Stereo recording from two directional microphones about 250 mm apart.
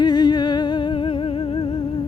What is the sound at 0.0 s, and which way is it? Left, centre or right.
Music, centre.